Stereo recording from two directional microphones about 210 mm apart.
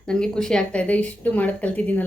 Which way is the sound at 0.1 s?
5° left (ahead or behind).